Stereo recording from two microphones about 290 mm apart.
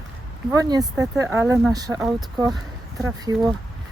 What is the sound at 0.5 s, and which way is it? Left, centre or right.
Speech, centre.